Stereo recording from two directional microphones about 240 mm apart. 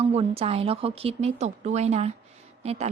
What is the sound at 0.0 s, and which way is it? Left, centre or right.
A woman's voice, right.